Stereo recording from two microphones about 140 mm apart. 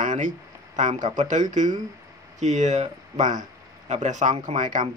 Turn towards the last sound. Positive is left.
turn(degrees=-60)  # may be behind; listen again after turning